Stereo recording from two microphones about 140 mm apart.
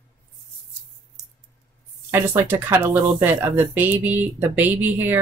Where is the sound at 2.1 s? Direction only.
15° right (ahead or behind).